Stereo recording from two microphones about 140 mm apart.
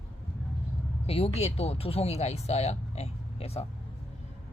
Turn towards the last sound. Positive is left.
turn(degrees=45)  # may be behind; listen again after turning